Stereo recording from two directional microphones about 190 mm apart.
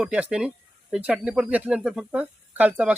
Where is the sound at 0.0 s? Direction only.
5° right (ahead or behind).